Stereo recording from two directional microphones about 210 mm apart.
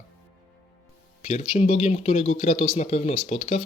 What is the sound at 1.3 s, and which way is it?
Speech, 30° left (ahead or behind).